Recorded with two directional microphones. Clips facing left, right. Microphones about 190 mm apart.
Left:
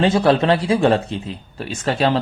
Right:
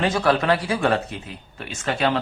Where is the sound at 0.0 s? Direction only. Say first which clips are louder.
Left 5 dB; 25° left (ahead or behind).